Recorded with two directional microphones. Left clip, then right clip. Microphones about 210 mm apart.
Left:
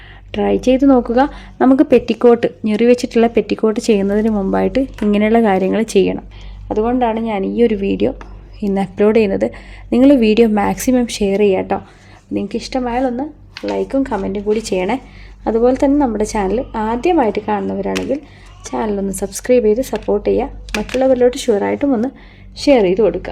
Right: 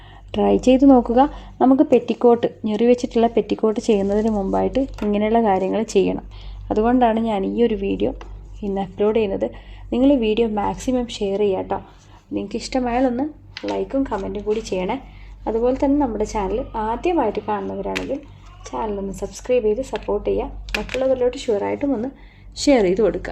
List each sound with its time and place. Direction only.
0.3 s a woman's voice: 5° left (ahead or behind)
6.7 s a woman's voice: 5° left (ahead or behind)
13.5 s a woman's voice: 30° left (ahead or behind)
22.5 s a woman's voice: 15° left (ahead or behind)